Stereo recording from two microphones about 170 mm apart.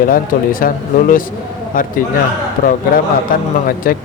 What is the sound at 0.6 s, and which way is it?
Speech, 55° left (ahead or behind).